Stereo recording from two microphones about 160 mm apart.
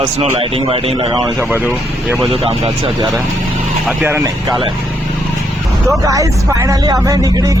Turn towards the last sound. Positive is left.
turn(degrees=-25)  # may be behind; listen again after turning